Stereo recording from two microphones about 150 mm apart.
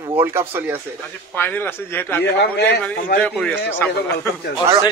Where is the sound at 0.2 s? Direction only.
15° right (ahead or behind).